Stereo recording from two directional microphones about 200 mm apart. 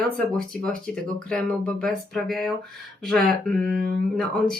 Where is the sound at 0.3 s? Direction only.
5° left (ahead or behind).